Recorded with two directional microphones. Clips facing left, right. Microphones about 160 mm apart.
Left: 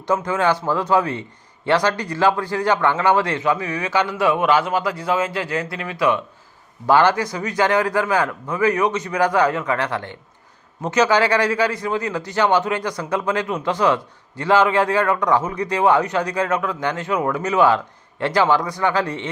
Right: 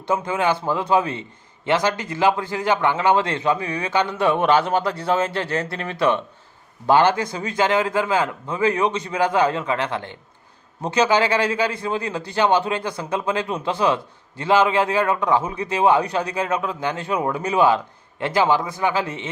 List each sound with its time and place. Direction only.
0.1 s a man's voice: 20° right (ahead or behind)